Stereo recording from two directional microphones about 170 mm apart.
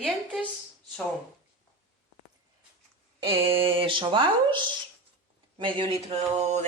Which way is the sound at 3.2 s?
30° right (ahead or behind).